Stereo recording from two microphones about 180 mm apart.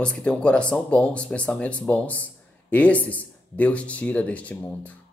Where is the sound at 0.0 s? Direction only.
5° left (ahead or behind).